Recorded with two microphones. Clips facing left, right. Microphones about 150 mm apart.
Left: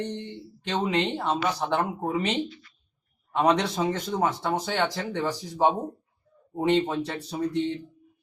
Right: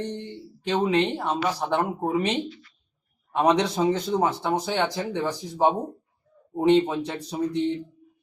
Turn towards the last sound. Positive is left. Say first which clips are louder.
# right 1 dB
turn(degrees=-15)  # may be behind; listen again after turning